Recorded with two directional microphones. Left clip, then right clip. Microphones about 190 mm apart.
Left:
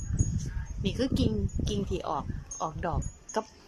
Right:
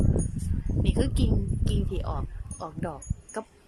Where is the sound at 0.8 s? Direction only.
Centre (ahead or behind).